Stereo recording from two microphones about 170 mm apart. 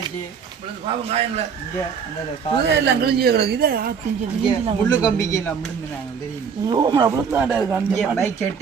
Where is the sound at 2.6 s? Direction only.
80° right; by 3.9 s 60° right (ahead or behind).